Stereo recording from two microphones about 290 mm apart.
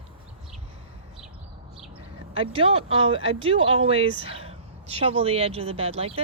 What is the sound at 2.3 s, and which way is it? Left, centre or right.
Speech, centre.